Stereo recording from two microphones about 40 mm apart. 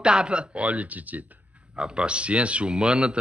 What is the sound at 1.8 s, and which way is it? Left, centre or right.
Speech, right.